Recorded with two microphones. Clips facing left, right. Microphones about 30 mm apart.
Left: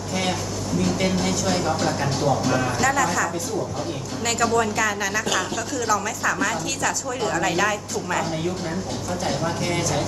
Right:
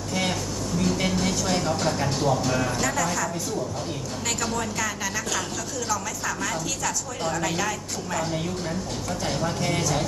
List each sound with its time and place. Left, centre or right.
0.1 s a sound: centre
1.7 s speech: centre
4.3 s a woman's voice: centre
9.2 s speech: centre